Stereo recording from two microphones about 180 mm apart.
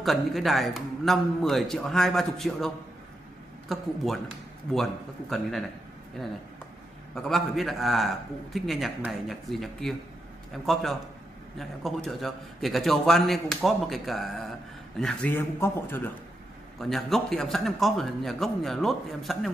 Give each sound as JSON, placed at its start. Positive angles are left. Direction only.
{"t": 0.0, "sound": "a man's voice", "side_deg": 0}
{"t": 5.3, "sound": "a man's voice", "side_deg": 0}
{"t": 7.2, "sound": "a man's voice", "side_deg": 0}
{"t": 16.9, "sound": "a man's voice", "side_deg": 0}